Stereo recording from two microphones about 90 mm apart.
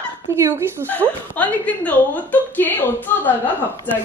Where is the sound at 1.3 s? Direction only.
15° left (ahead or behind).